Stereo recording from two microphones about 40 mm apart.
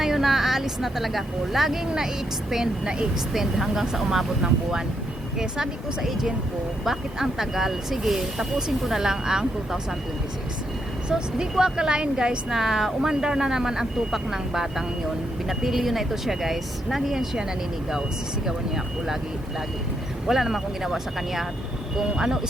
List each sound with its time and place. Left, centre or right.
0.0 s speech: centre
3.3 s speech: centre
5.4 s speech: centre
11.1 s speech: centre
12.5 s speech: centre
20.2 s speech: centre